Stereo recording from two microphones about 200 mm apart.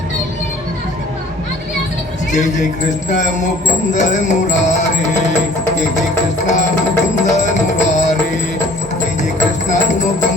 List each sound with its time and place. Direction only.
3.9 s music: 35° left (ahead or behind)
9.6 s music: 35° left (ahead or behind)